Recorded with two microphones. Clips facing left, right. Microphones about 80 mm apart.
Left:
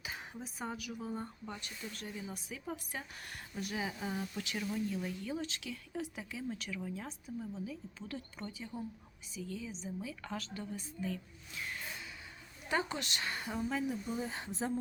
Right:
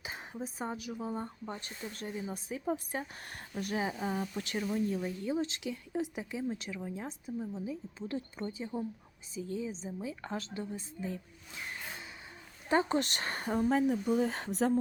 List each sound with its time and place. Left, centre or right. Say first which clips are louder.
0.0 s speech: right 4 dB; right
3.5 s speech: right 5 dB; right